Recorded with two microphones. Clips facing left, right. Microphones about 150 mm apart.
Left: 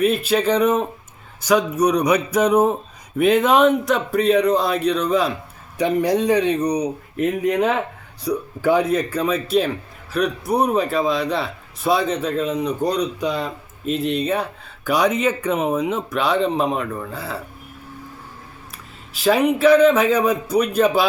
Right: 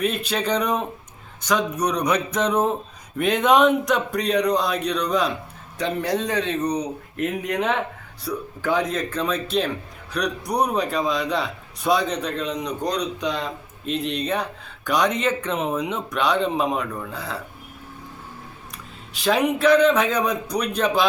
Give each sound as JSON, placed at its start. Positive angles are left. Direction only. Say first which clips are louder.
{"t": 0.0, "sound": "a man's voice", "louder": "left 6 dB", "side_deg": 5}
{"t": 7.2, "sound": "a man's voice", "louder": "left 6 dB", "side_deg": 0}
{"t": 19.1, "sound": "a man's voice", "louder": "left 4 dB", "side_deg": 5}